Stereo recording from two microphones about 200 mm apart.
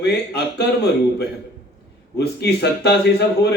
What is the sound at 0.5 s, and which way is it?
Speech, 55° left (ahead or behind).